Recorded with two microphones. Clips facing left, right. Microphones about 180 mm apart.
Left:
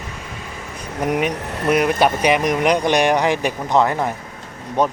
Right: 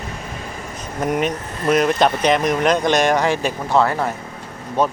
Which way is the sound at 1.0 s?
10° left (ahead or behind).